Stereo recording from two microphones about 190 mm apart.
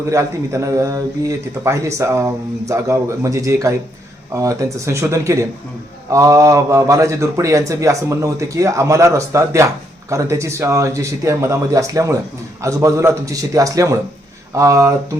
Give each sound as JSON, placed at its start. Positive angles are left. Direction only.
{"t": 0.1, "sound": "speech", "side_deg": -15}